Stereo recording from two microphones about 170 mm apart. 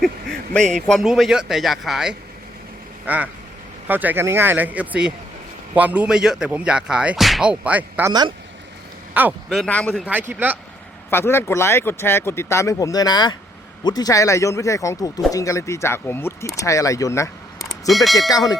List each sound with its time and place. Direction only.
0.0 s a man's voice: 5° left (ahead or behind)
9.1 s a man's voice: 10° right (ahead or behind)
9.6 s a man's voice: 10° left (ahead or behind); by 10.6 s 10° right (ahead or behind)
11.1 s speech: 15° left (ahead or behind)
17.6 s vehicle: centre (ahead or behind)
18.3 s speech: 20° left (ahead or behind)